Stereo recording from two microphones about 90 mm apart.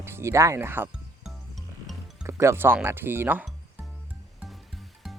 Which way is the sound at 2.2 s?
30° right (ahead or behind).